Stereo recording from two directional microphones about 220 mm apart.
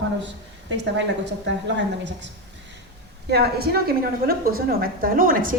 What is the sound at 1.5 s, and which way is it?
Speech, 55° right (ahead or behind).